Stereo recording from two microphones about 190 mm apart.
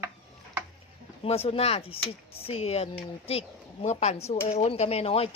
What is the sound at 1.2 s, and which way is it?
Speech, 30° left (ahead or behind).